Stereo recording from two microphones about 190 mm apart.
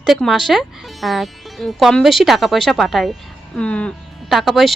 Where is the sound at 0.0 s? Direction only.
Centre (ahead or behind).